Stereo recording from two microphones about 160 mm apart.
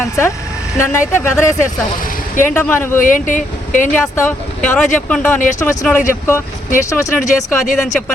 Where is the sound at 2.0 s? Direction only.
55° left (ahead or behind).